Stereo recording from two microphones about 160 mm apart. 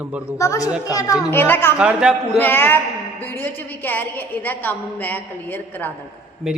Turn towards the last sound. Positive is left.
turn(degrees=0)  # may be behind; listen again after turning